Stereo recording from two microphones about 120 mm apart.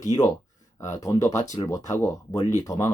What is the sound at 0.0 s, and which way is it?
Speech, 30° left (ahead or behind).